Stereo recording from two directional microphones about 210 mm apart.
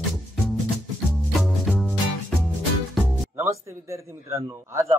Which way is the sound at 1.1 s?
Centre (ahead or behind).